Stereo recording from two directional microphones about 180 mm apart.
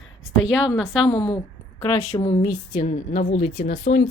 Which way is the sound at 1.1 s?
35° left (ahead or behind).